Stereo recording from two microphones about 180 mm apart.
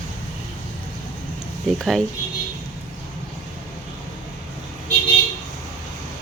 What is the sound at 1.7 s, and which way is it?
Speech, centre (ahead or behind).